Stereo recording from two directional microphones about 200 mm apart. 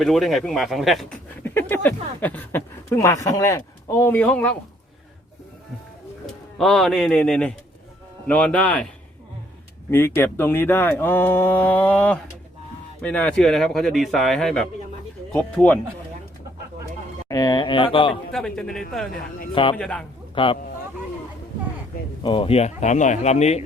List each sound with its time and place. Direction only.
0.0 s speech: centre (ahead or behind)
1.5 s speech: 10° left (ahead or behind)
6.6 s speech: centre (ahead or behind)
9.9 s speech: 10° left (ahead or behind)
17.2 s speech: 20° left (ahead or behind)
18.3 s speech: 5° left (ahead or behind)
20.3 s speech: 25° left (ahead or behind)
22.2 s speech: 25° left (ahead or behind)